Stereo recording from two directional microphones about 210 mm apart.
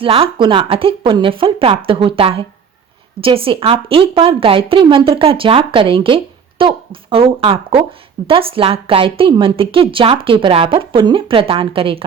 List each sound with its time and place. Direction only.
0.0 s a woman's voice: 25° right (ahead or behind)